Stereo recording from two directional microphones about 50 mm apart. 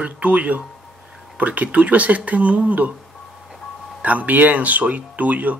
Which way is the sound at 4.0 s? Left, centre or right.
Right.